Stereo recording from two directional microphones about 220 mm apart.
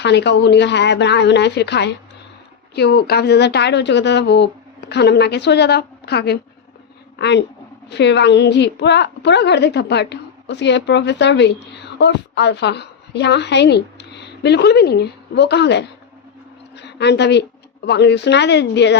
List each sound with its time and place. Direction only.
0.0 s a woman's voice: 50° left (ahead or behind)